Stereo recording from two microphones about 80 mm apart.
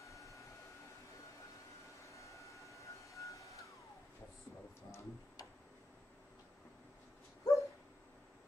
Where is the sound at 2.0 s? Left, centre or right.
Left.